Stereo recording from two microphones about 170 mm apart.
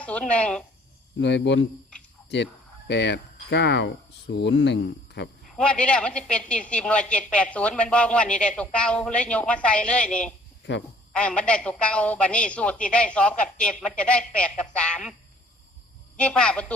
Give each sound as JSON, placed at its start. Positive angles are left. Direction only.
{"t": 0.0, "sound": "speech", "side_deg": 5}
{"t": 1.2, "sound": "speech", "side_deg": 90}
{"t": 5.5, "sound": "speech", "side_deg": 5}
{"t": 16.1, "sound": "speech", "side_deg": 5}